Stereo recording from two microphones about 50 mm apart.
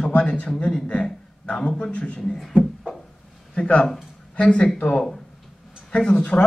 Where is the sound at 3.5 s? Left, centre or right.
Left.